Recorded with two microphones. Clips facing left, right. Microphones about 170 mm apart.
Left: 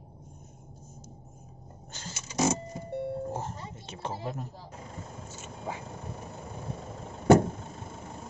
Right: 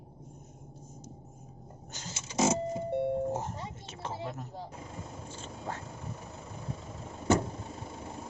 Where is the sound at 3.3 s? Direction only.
15° right (ahead or behind).